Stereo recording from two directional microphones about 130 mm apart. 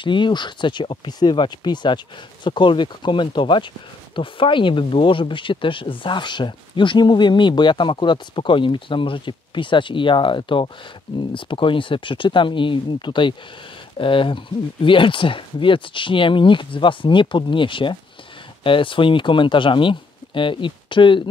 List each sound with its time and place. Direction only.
0.0 s speech: 35° left (ahead or behind)